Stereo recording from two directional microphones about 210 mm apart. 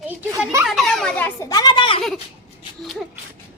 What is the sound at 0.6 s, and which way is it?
A child's voice, centre (ahead or behind).